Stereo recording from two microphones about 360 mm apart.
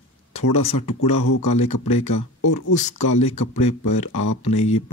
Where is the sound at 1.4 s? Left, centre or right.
Left.